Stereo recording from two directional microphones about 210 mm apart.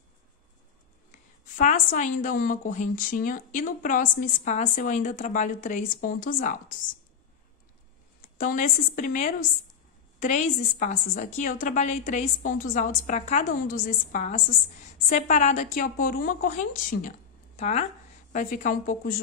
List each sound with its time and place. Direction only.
1.6 s a woman's voice: 40° left (ahead or behind)
8.4 s a woman's voice: 40° left (ahead or behind)